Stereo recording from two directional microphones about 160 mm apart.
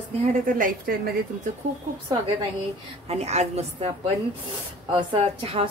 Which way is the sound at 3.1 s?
40° right (ahead or behind).